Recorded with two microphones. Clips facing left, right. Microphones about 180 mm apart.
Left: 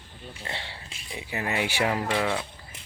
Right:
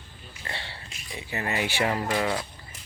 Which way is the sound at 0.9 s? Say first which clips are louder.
Even; 30° left (ahead or behind).